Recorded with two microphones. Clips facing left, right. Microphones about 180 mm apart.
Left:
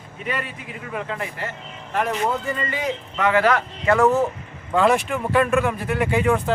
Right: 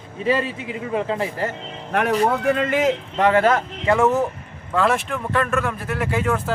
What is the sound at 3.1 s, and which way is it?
Speech, 30° right (ahead or behind).